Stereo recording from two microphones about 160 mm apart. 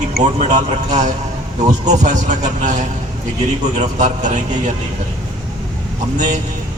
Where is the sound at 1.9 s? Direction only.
50° right (ahead or behind).